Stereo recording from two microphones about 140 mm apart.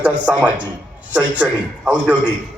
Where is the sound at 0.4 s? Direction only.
10° right (ahead or behind).